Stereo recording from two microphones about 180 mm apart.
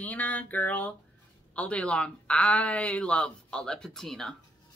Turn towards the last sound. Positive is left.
turn(degrees=0)  # may be behind; listen again after turning